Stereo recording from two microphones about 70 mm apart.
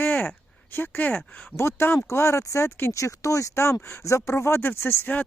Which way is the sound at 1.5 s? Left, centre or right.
Left.